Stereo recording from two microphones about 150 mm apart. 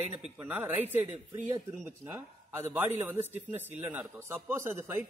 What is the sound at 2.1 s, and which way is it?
Speech, 15° right (ahead or behind).